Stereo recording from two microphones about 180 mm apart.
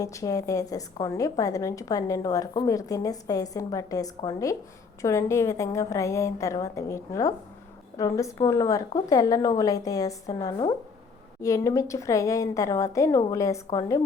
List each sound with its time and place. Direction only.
0.0 s a woman's voice: 20° left (ahead or behind)